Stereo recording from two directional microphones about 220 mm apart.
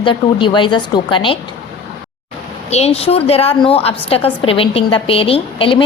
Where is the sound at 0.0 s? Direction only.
20° left (ahead or behind).